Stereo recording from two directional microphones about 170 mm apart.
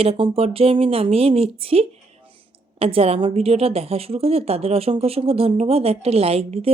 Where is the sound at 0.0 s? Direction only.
35° right (ahead or behind).